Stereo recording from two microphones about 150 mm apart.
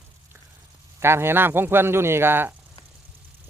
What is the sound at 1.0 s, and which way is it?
Speech, 15° right (ahead or behind).